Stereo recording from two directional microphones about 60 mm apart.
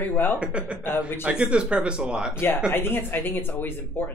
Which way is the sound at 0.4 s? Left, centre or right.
Centre.